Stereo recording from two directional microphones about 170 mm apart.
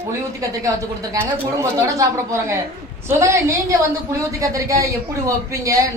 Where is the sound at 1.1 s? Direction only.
20° right (ahead or behind).